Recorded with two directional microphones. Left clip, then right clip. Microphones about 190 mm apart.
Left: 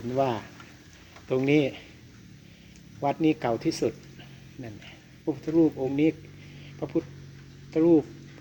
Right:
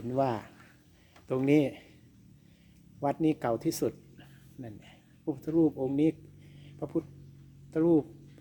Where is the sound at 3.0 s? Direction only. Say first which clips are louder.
Left 4 dB; 35° right (ahead or behind).